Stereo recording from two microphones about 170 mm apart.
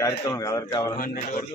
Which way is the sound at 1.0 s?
50° left (ahead or behind).